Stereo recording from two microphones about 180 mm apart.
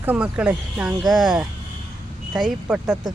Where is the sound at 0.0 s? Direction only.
5° right (ahead or behind).